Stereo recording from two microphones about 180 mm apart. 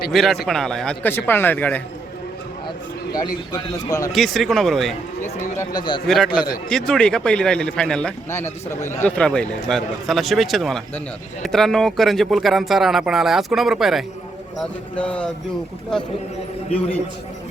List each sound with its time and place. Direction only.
0.1 s speech: centre (ahead or behind)
2.6 s a man's voice: 20° left (ahead or behind)
4.1 s speech: centre (ahead or behind)
5.2 s speech: 15° left (ahead or behind)
6.1 s speech: centre (ahead or behind)